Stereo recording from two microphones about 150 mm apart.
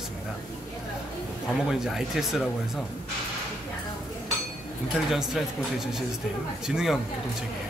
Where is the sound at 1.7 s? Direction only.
Centre (ahead or behind).